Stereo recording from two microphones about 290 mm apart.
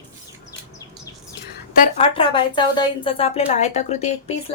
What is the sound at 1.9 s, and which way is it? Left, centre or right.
A woman's voice, centre.